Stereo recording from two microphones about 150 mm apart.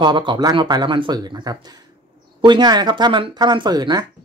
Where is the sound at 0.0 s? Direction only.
30° right (ahead or behind).